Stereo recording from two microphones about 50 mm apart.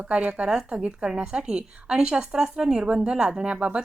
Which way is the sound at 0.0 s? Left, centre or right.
Right.